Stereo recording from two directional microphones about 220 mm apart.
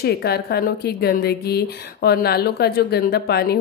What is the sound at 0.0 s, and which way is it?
Speech, 45° left (ahead or behind).